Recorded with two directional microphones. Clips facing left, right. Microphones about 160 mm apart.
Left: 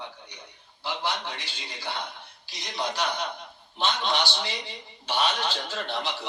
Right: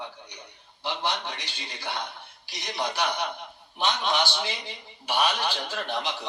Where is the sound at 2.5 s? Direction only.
15° right (ahead or behind).